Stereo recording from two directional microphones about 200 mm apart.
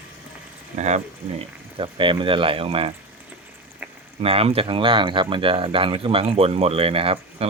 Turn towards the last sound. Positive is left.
turn(degrees=-30)  # may be behind; listen again after turning